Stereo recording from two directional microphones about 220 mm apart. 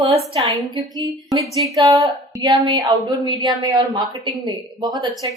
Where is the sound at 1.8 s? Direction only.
20° right (ahead or behind).